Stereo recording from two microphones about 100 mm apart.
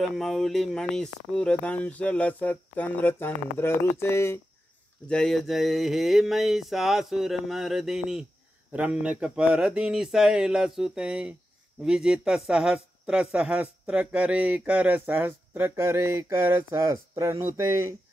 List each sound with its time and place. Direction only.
0.0 s speech: centre (ahead or behind); by 4.4 s 25° left (ahead or behind)
5.0 s a sound: 10° left (ahead or behind)
8.7 s speech: 10° right (ahead or behind); by 17.9 s 30° right (ahead or behind)